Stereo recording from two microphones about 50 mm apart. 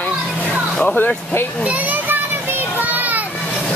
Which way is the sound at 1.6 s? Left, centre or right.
Right.